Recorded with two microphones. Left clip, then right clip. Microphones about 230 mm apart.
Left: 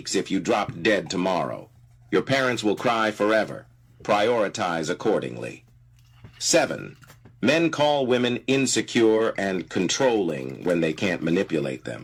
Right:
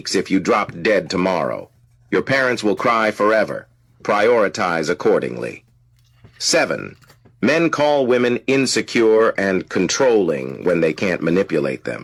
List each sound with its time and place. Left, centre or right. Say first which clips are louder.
0.0 s speech: right 7 dB; right